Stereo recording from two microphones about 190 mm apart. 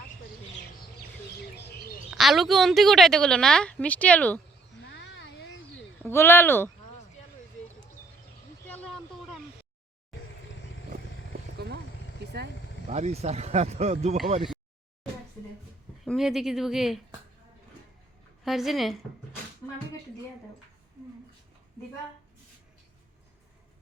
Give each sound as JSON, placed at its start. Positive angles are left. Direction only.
{"t": 1.5, "sound": "bird", "side_deg": 60}
{"t": 2.0, "sound": "a woman's voice", "side_deg": 0}
{"t": 4.9, "sound": "a sound", "side_deg": 70}
{"t": 6.0, "sound": "speech", "side_deg": 10}
{"t": 8.6, "sound": "vehicle", "side_deg": 10}
{"t": 11.5, "sound": "vehicle", "side_deg": -60}
{"t": 12.9, "sound": "speech", "side_deg": -35}
{"t": 16.0, "sound": "a woman's voice", "side_deg": 0}
{"t": 18.4, "sound": "a woman's voice", "side_deg": 0}
{"t": 19.6, "sound": "a sound", "side_deg": 10}